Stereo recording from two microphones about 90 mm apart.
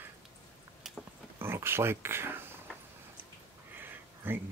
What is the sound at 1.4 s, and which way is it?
Speech, 25° right (ahead or behind).